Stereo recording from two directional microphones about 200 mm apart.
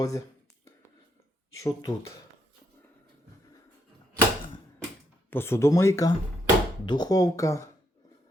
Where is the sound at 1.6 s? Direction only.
15° left (ahead or behind).